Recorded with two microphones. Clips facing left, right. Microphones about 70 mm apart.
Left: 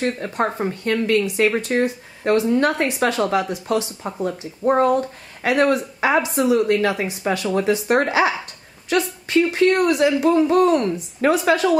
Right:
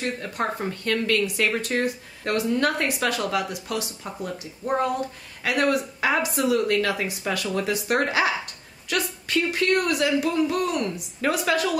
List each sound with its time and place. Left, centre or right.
0.0 s speech: left